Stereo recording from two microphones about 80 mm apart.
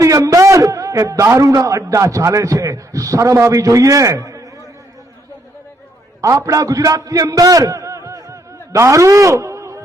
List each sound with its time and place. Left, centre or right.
0.0 s a man's voice: right
6.2 s a man's voice: right